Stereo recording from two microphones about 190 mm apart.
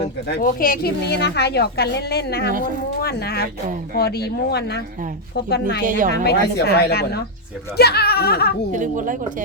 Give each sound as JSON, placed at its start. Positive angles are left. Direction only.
{"t": 0.3, "sound": "a woman's voice", "side_deg": 50}
{"t": 5.8, "sound": "speech", "side_deg": -45}
{"t": 6.2, "sound": "a woman's voice", "side_deg": 60}
{"t": 8.7, "sound": "speech", "side_deg": -40}